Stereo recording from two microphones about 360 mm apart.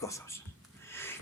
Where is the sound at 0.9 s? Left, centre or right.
Centre.